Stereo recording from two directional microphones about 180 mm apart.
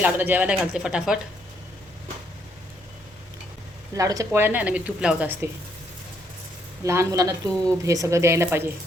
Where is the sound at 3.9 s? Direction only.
20° right (ahead or behind).